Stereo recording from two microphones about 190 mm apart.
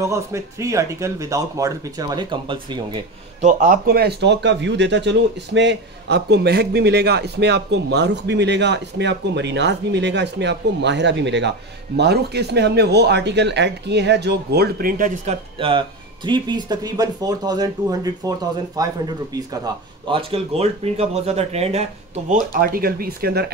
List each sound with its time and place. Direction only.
0.0 s speech: 15° right (ahead or behind)
3.4 s speech: 45° right (ahead or behind)
15.5 s speech: 25° right (ahead or behind); by 23.4 s 50° right (ahead or behind)